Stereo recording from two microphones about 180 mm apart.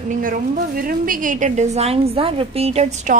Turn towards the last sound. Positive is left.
turn(degrees=-40)  # may be behind; listen again after turning